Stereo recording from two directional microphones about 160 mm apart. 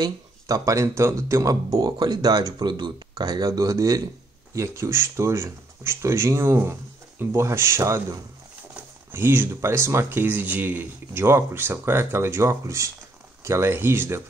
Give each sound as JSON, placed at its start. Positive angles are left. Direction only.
{"t": 0.0, "sound": "speech", "side_deg": -20}